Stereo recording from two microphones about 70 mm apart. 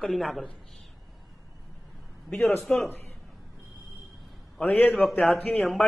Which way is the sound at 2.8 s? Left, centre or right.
Left.